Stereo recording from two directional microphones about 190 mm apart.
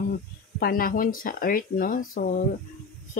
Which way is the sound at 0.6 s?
50° left (ahead or behind).